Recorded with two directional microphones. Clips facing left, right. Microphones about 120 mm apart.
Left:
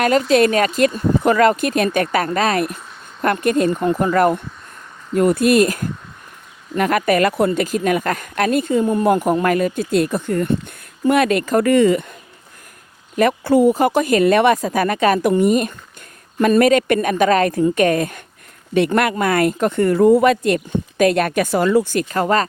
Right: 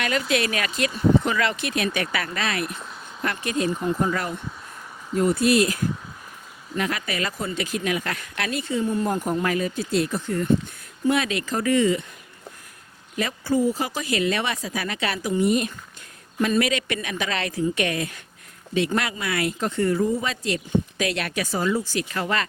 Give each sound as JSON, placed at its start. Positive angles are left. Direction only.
{"t": 0.0, "sound": "speech", "side_deg": 40}
{"t": 13.1, "sound": "speech", "side_deg": 60}